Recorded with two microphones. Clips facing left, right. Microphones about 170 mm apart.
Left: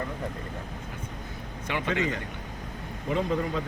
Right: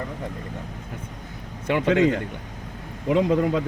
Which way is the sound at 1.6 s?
55° right (ahead or behind).